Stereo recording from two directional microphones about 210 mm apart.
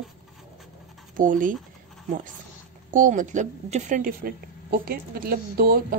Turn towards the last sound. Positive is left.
turn(degrees=-45)  # may be behind; listen again after turning